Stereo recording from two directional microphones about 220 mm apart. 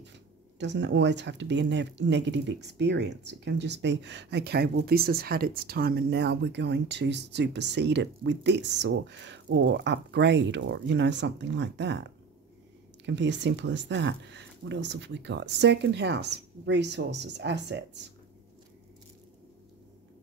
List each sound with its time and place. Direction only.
0.6 s speech: 50° right (ahead or behind)